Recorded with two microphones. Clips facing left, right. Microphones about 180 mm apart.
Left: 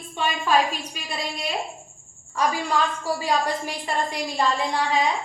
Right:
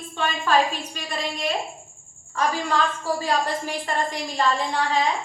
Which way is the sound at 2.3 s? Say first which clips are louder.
Even; 10° left (ahead or behind).